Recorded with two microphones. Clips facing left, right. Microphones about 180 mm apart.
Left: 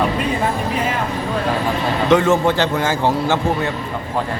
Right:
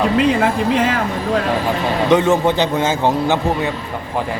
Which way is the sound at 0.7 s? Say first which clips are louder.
Right 5 dB; 90° right.